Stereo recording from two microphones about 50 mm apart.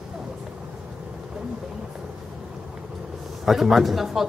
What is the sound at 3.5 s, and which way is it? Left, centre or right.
Speech, centre.